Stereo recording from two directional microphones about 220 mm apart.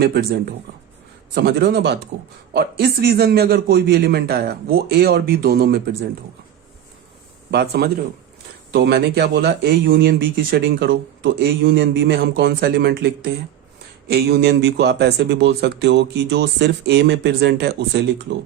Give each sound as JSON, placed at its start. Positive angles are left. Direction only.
{"t": 0.0, "sound": "speech", "side_deg": -45}
{"t": 7.5, "sound": "speech", "side_deg": -50}
{"t": 14.1, "sound": "speech", "side_deg": -45}